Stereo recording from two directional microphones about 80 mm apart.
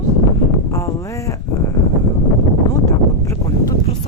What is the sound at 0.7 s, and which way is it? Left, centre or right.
Speech, left.